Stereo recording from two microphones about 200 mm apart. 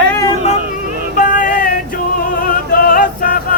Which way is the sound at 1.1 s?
40° left (ahead or behind).